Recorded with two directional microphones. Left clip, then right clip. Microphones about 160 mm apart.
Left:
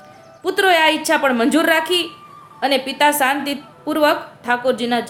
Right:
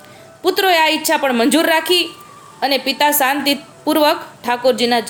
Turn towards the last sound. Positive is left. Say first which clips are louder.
# right 4 dB
turn(degrees=-20)  # may be behind; listen again after turning